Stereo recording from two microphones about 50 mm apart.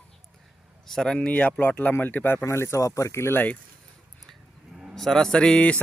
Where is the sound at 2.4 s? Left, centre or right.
Left.